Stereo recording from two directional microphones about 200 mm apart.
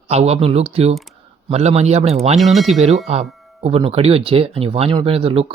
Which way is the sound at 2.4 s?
Centre (ahead or behind).